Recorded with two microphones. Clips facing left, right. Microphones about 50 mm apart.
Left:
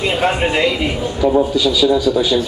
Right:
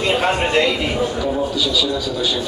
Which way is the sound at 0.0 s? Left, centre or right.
Centre.